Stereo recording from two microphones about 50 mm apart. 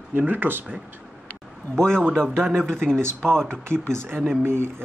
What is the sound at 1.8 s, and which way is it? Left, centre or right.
Speech, centre.